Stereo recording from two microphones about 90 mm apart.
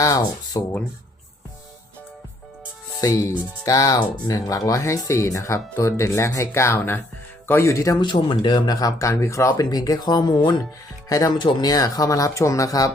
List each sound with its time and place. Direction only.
0.0 s speech: 40° left (ahead or behind)
3.0 s speech: 40° left (ahead or behind)
8.0 s speech: 60° left (ahead or behind)
11.1 s speech: 40° left (ahead or behind)
11.3 s speech: 50° left (ahead or behind)